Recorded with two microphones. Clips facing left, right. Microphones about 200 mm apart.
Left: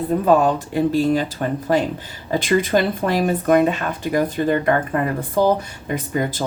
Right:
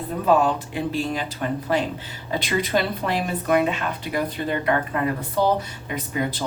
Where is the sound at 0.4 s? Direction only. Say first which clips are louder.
Left 6 dB; 40° left (ahead or behind).